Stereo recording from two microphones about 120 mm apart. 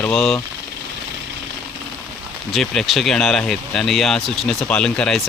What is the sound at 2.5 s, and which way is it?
Speech, centre (ahead or behind).